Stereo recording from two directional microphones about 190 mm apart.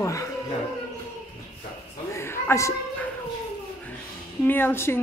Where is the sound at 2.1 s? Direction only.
15° left (ahead or behind).